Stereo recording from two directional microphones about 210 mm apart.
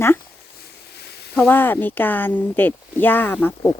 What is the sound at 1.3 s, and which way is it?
Speech, 10° left (ahead or behind).